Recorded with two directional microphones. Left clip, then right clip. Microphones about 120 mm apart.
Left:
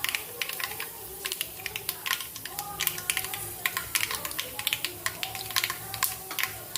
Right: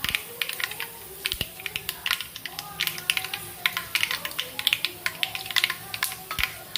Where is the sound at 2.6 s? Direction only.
30° left (ahead or behind).